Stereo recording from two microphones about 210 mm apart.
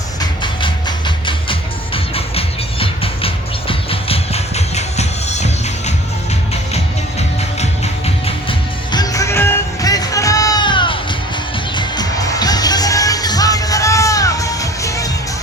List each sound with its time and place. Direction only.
0.2 s music: 20° left (ahead or behind)